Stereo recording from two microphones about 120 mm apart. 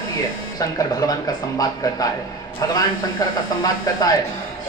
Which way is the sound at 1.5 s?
30° left (ahead or behind).